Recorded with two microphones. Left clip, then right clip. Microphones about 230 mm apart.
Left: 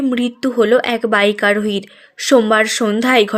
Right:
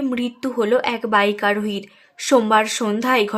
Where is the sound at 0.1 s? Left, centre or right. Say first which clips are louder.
Left 6 dB; centre.